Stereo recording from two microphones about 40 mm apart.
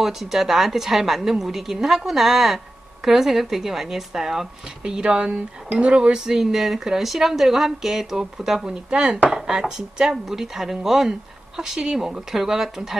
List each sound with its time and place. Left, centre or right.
0.0 s a woman's voice: centre
4.8 s speech: right
6.2 s speech: centre
8.6 s speech: right